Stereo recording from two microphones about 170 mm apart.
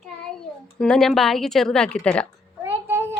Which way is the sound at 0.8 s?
5° left (ahead or behind).